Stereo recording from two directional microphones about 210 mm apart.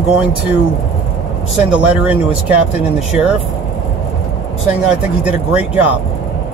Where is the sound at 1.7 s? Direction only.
5° right (ahead or behind).